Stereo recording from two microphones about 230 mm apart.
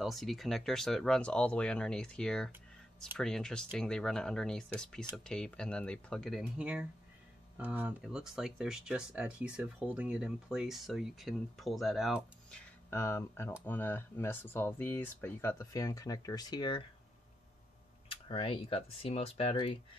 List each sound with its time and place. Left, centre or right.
0.0 s speech: centre
18.0 s speech: left